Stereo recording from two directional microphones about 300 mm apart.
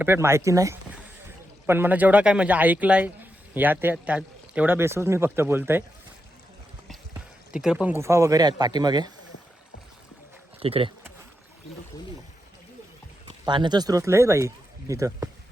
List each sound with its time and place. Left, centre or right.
0.0 s a man's voice: centre
7.5 s speech: centre
10.6 s speech: centre
13.2 s speech: centre